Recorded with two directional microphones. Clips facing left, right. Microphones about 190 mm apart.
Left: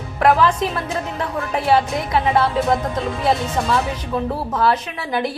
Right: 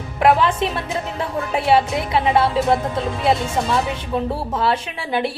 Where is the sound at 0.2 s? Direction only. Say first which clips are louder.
Even; 25° right (ahead or behind).